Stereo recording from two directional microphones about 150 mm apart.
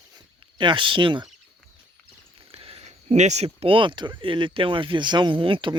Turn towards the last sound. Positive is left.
turn(degrees=-35)  # may be behind; listen again after turning